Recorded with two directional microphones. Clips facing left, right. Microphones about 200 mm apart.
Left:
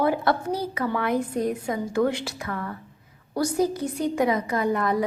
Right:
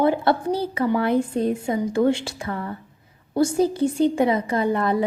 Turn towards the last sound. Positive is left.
turn(degrees=-30)  # may be behind; listen again after turning